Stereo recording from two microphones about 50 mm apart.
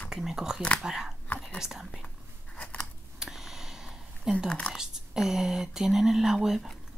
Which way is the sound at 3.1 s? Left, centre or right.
Centre.